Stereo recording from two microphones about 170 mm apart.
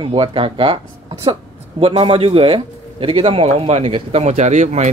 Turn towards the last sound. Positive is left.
turn(degrees=-45)  # may be behind; listen again after turning